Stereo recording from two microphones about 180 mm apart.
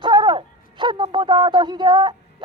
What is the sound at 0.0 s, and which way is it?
Speech, 25° right (ahead or behind).